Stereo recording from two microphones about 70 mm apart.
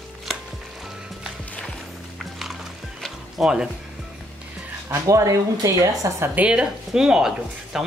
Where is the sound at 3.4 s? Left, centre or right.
Centre.